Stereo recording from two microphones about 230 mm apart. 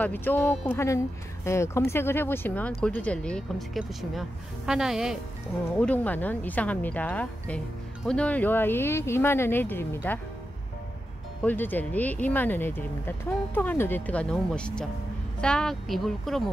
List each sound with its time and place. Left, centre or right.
0.0 s speech: centre
11.4 s speech: centre